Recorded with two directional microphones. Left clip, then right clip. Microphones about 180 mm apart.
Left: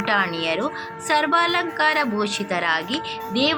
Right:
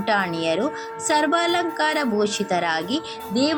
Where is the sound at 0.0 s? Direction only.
25° right (ahead or behind).